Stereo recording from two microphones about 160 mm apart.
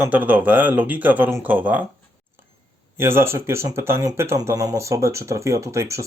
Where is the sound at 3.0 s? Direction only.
15° right (ahead or behind).